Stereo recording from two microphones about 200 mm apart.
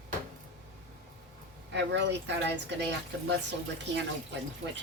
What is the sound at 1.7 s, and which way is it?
Speech, 60° right (ahead or behind).